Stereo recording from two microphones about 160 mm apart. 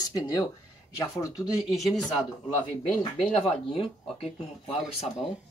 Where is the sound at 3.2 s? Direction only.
40° left (ahead or behind).